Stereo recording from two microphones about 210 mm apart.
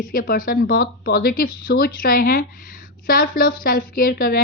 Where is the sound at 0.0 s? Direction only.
40° left (ahead or behind).